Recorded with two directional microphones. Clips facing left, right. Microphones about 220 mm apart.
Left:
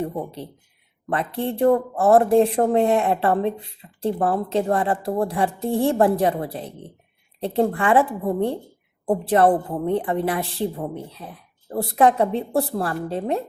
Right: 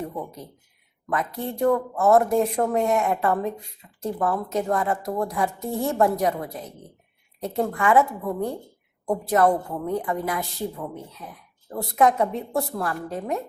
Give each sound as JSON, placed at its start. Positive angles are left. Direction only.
{"t": 0.0, "sound": "a woman's voice", "side_deg": 30}